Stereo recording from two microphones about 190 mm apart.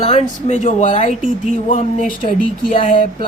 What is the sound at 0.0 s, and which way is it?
Speech, 35° left (ahead or behind).